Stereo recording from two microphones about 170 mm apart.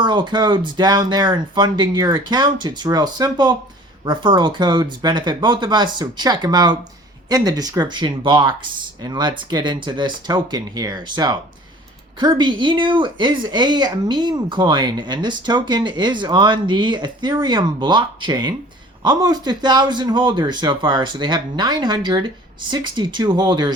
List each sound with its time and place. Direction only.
0.0 s speech: 25° right (ahead or behind)